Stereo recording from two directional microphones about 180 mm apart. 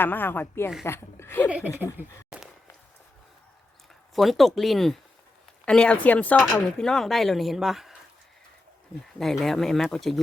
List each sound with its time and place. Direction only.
0.0 s a woman's voice: 10° left (ahead or behind)
1.5 s speech: 10° right (ahead or behind)
2.0 s a sound: 5° right (ahead or behind)
4.1 s speech: centre (ahead or behind)
9.1 s speech: centre (ahead or behind)